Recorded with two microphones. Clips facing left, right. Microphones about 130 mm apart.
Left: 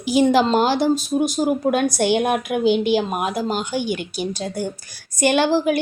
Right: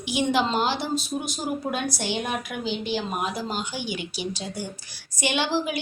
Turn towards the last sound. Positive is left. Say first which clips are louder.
# left 9 dB
turn(degrees=50)  # may be behind; listen again after turning